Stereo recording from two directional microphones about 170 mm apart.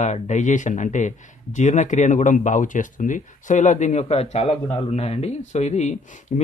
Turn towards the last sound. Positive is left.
turn(degrees=40)  # may be behind; listen again after turning